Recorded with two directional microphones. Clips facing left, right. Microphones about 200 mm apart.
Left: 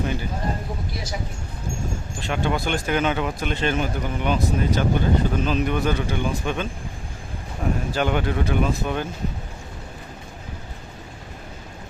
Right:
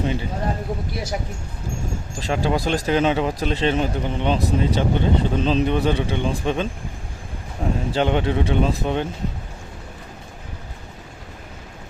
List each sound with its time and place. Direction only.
0.0 s speech: 25° right (ahead or behind)
2.1 s speech: 35° right (ahead or behind)
7.6 s a sound: 25° right (ahead or behind)
7.9 s speech: 25° right (ahead or behind)